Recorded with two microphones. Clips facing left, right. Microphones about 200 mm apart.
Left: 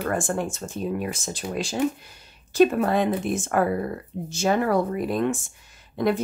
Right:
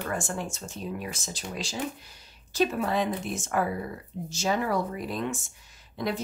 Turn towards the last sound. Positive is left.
turn(degrees=55)  # may be behind; listen again after turning